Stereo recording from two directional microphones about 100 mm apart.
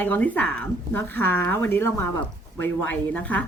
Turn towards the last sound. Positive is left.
turn(degrees=15)  # may be behind; listen again after turning